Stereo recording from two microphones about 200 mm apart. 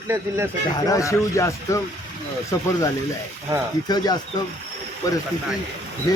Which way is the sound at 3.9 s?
20° left (ahead or behind).